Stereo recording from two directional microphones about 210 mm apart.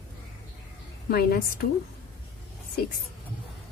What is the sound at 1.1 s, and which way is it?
Speech, 45° left (ahead or behind).